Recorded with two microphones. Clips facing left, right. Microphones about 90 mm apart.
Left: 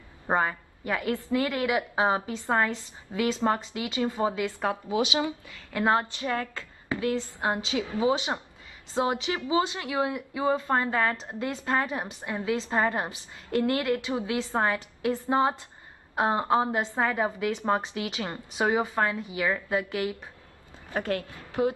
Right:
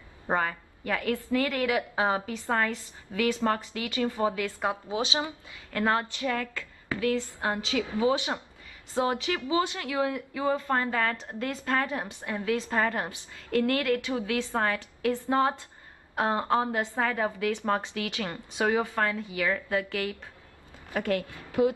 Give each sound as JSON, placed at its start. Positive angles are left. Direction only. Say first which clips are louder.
{"t": 0.3, "sound": "a woman's voice", "louder": "left 2 dB", "side_deg": 25}
{"t": 4.8, "sound": "a woman's voice", "louder": "left 3 dB", "side_deg": -30}
{"t": 5.7, "sound": "a woman's voice", "louder": "left 2 dB", "side_deg": 20}